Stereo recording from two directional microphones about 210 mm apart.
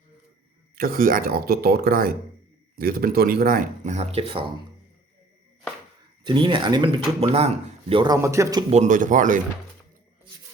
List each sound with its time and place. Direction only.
0.8 s speech: 45° right (ahead or behind); by 4.5 s 25° right (ahead or behind)
6.2 s speech: 25° right (ahead or behind)
8.7 s speech: 35° right (ahead or behind)